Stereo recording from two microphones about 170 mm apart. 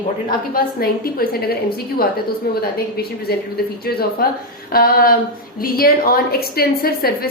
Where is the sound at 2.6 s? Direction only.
65° left (ahead or behind).